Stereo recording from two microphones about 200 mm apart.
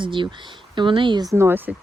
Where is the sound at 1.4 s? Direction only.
10° right (ahead or behind).